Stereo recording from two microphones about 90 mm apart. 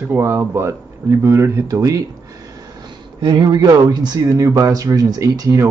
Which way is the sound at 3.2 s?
55° right (ahead or behind).